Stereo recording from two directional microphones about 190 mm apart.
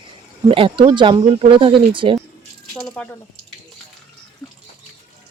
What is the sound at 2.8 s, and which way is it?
Speech, 5° left (ahead or behind).